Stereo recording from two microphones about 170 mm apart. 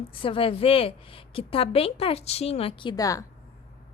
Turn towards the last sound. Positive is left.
turn(degrees=20)  # may be behind; listen again after turning